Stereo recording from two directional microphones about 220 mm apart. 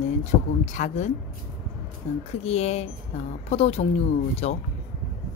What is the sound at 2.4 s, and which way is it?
Speech, 30° left (ahead or behind).